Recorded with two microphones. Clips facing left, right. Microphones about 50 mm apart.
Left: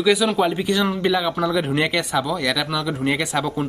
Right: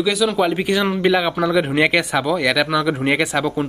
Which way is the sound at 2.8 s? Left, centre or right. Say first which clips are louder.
Right 4 dB; right.